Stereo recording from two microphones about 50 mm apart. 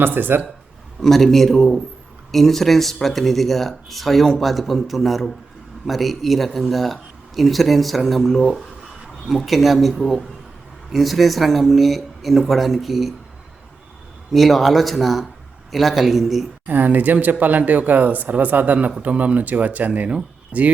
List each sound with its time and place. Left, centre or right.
0.0 s speech: right
1.0 s speech: centre
14.3 s speech: centre
16.6 s speech: right